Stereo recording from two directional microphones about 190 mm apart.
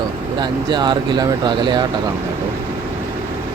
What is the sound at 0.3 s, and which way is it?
Speech, 25° right (ahead or behind).